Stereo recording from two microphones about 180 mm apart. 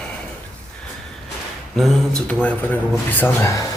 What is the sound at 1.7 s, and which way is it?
Speech, centre (ahead or behind).